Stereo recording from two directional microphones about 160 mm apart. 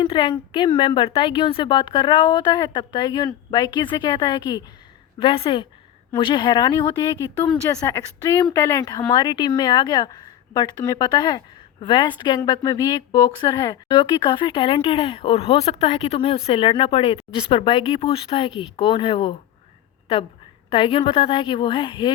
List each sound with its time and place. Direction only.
0.0 s a woman's voice: 30° left (ahead or behind)
20.7 s speech: 35° left (ahead or behind)